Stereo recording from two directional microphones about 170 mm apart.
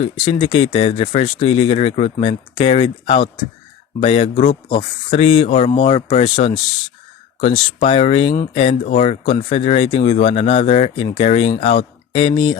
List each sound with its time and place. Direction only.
0.0 s speech: 30° left (ahead or behind)